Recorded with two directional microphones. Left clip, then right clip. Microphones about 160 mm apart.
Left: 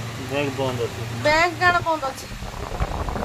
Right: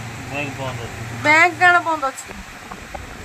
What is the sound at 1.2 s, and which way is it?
Speech, 5° right (ahead or behind).